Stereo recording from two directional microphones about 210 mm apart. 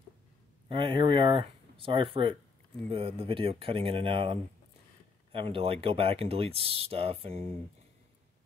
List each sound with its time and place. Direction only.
0.7 s speech: 25° right (ahead or behind)